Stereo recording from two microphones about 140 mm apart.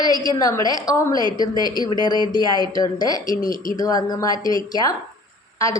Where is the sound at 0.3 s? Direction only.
25° left (ahead or behind).